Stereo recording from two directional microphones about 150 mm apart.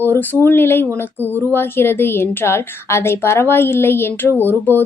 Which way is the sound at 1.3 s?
15° right (ahead or behind).